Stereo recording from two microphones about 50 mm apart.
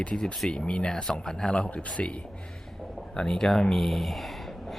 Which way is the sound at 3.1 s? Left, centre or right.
Centre.